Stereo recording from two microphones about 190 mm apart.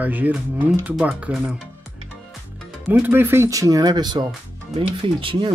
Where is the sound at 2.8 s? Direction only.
10° right (ahead or behind).